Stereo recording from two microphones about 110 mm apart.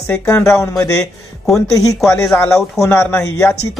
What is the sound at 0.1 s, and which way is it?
Speech, 25° left (ahead or behind).